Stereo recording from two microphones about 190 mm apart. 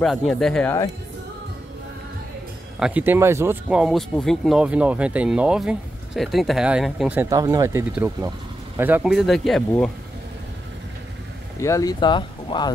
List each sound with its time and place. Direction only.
0.0 s speech: centre (ahead or behind)
2.8 s speech: 10° right (ahead or behind)
11.6 s speech: 15° left (ahead or behind)